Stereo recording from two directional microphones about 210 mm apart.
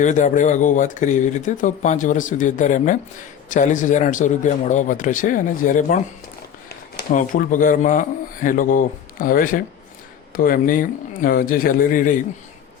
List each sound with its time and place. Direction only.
0.0 s speech: 35° left (ahead or behind)